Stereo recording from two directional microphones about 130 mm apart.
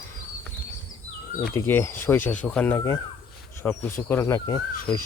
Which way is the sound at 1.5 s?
20° left (ahead or behind).